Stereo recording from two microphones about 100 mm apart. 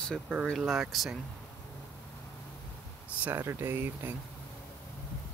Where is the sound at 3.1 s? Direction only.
15° right (ahead or behind).